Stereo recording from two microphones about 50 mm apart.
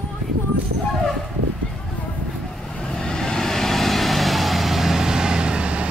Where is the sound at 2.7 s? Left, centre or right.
Centre; by 5.9 s right.